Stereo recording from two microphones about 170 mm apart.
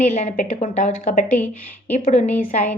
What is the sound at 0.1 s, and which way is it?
A woman's voice, 45° left (ahead or behind).